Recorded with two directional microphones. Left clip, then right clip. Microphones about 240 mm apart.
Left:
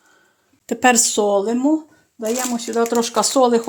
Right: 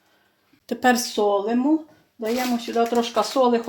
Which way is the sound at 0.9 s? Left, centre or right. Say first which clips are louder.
Left 2 dB; left.